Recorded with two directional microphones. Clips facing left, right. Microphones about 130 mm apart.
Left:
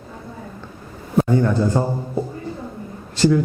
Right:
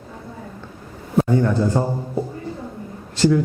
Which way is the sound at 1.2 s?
20° left (ahead or behind).